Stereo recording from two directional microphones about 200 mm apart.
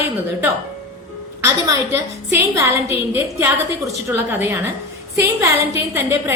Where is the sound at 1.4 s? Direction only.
15° right (ahead or behind).